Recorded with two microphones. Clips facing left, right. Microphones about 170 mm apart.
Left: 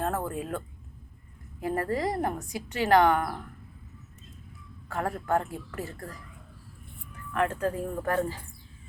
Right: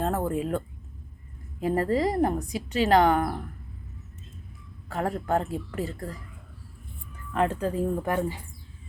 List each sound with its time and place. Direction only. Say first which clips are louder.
0.0 s a sound: right 4 dB; 20° right (ahead or behind)
1.5 s a woman's voice: right 4 dB; 20° right (ahead or behind)
4.9 s a woman's voice: right 2 dB; 20° right (ahead or behind)
7.3 s speech: right 2 dB; 15° right (ahead or behind)